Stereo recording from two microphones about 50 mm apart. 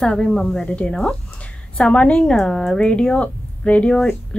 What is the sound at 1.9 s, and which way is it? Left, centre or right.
Speech, left.